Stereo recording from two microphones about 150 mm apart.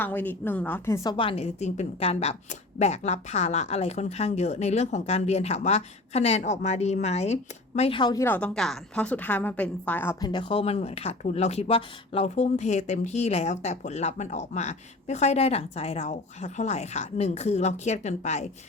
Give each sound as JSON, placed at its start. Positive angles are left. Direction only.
{"t": 0.0, "sound": "a woman's voice", "side_deg": 10}
{"t": 1.1, "sound": "speech", "side_deg": 35}
{"t": 7.8, "sound": "speech", "side_deg": 35}
{"t": 8.2, "sound": "a woman's voice", "side_deg": 10}
{"t": 10.2, "sound": "speech", "side_deg": 30}